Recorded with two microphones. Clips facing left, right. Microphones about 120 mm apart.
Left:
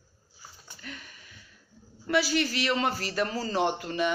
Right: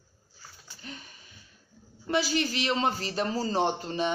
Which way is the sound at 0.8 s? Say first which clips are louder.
Even; 30° right (ahead or behind).